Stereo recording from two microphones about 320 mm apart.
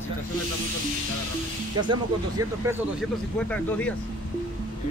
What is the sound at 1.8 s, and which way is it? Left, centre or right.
Speech, centre.